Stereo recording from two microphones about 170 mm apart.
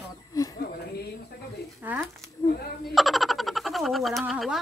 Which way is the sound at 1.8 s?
10° right (ahead or behind).